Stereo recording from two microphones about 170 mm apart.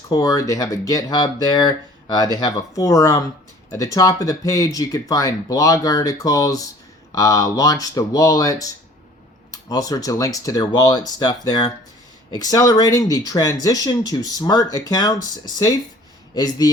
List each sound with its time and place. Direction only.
0.1 s speech: 20° left (ahead or behind)